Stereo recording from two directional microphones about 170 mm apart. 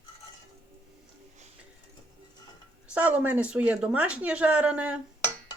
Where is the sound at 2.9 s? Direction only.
10° right (ahead or behind).